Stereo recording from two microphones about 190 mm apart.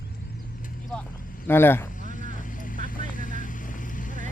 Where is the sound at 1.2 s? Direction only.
45° left (ahead or behind).